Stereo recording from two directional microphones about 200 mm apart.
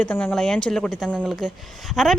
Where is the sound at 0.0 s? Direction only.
10° left (ahead or behind).